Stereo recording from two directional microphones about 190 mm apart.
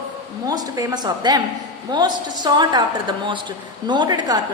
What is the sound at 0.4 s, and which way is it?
A woman's voice, 20° right (ahead or behind).